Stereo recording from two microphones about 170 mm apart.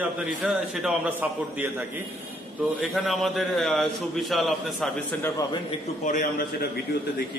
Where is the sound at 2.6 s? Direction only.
Centre (ahead or behind).